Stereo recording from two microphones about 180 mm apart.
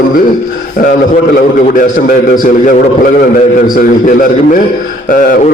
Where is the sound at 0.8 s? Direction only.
50° left (ahead or behind).